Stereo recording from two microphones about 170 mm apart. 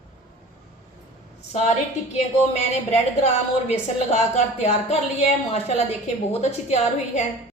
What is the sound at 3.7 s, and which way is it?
A woman's voice, 40° left (ahead or behind).